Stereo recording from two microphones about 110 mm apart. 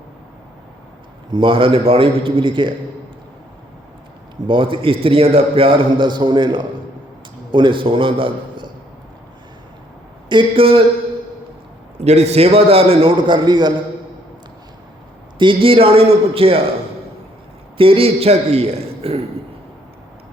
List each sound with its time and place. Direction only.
1.3 s a man's voice: 50° right (ahead or behind)
4.4 s a man's voice: 50° right (ahead or behind)
10.2 s a man's voice: 50° right (ahead or behind)
11.9 s a man's voice: 85° right; by 13.7 s 40° right (ahead or behind)
15.4 s a man's voice: 55° right (ahead or behind)
17.7 s a man's voice: 55° right (ahead or behind)